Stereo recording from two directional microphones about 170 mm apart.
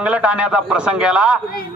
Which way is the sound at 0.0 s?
10° right (ahead or behind).